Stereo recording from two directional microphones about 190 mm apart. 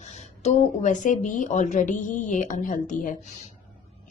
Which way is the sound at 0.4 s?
40° left (ahead or behind).